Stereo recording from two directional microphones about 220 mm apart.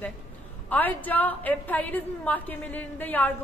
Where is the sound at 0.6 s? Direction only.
10° left (ahead or behind).